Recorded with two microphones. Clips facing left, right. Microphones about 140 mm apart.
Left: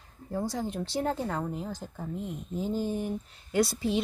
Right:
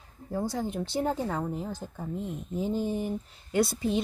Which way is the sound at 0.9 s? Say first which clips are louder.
Right 1 dB; centre (ahead or behind).